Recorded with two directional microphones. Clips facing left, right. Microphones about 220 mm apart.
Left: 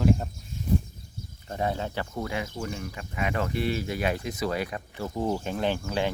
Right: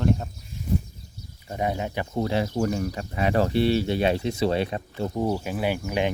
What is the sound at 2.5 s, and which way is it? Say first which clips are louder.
Speech: right 9 dB; 50° right (ahead or behind).